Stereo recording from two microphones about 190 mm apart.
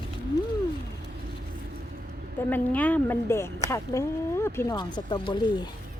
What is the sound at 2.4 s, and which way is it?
Speech, 10° left (ahead or behind).